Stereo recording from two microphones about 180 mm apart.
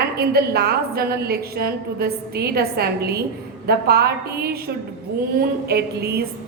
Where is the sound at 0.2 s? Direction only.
60° right (ahead or behind).